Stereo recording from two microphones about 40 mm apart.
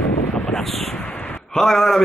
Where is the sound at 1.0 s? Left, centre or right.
Left.